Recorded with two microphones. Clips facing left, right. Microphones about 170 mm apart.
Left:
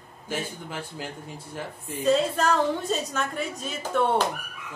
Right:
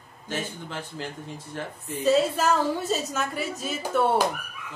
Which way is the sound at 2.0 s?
5° right (ahead or behind).